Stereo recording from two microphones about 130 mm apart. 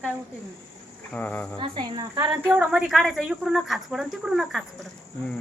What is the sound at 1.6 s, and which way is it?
Speech, 35° right (ahead or behind).